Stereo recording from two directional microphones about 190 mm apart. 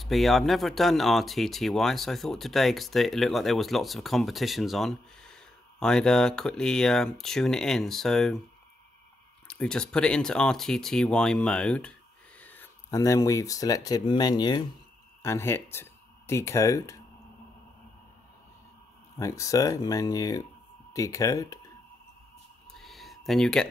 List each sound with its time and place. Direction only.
0.0 s speech: centre (ahead or behind)
9.5 s speech: 5° left (ahead or behind)
19.1 s speech: 15° left (ahead or behind)
22.7 s a sound: centre (ahead or behind)